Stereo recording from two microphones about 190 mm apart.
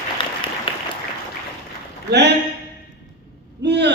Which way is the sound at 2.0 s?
60° right (ahead or behind).